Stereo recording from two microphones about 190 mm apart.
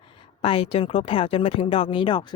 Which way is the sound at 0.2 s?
30° left (ahead or behind).